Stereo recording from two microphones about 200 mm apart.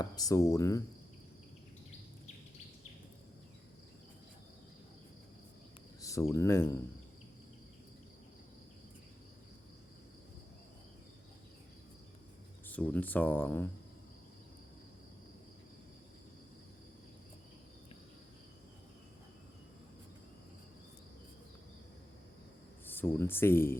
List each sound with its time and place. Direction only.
0.0 s speech: 15° left (ahead or behind)
6.0 s a sound: 15° left (ahead or behind)
6.3 s speech: 15° left (ahead or behind)
12.6 s speech: 10° left (ahead or behind)
22.9 s speech: 10° left (ahead or behind)